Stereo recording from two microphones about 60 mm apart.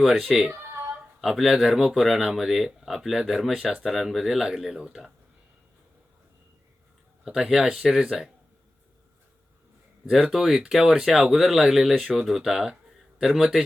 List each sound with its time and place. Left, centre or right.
0.0 s speech: centre
0.7 s a sound: right
1.2 s speech: centre
7.3 s speech: centre
10.2 s speech: centre